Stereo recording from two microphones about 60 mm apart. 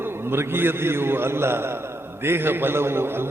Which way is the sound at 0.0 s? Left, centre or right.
Right.